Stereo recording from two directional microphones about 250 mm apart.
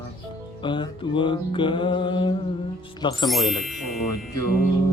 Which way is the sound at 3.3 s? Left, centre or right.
Centre.